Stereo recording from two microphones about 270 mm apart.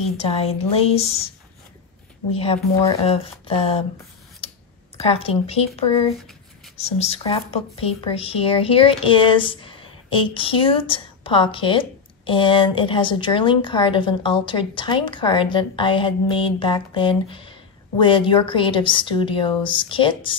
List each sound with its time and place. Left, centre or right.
0.0 s speech: left
2.3 s speech: left
4.4 s clicking: left
4.9 s speech: left